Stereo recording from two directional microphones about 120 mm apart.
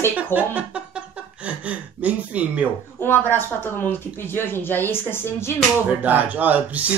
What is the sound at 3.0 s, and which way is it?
Speech, 20° left (ahead or behind).